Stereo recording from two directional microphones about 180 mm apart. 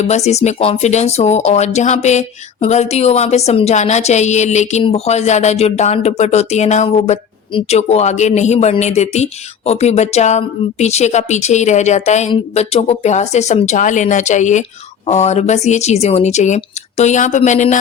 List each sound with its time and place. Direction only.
0.0 s speech: 35° left (ahead or behind)